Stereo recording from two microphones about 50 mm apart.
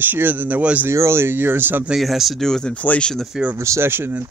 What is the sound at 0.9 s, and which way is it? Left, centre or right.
Speech, right.